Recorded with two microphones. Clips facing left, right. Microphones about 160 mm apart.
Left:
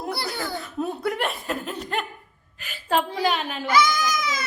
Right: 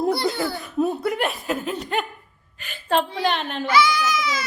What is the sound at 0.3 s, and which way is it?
Baby laughter, 15° right (ahead or behind).